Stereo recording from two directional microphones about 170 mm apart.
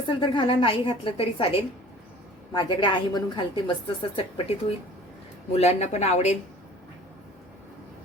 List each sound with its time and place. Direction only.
0.1 s a woman's voice: 30° left (ahead or behind)
5.5 s a woman's voice: 40° left (ahead or behind)